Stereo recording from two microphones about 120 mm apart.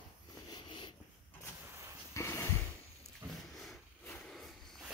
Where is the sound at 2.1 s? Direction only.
25° left (ahead or behind).